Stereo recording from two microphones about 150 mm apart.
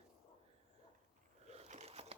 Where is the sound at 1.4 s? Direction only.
45° right (ahead or behind).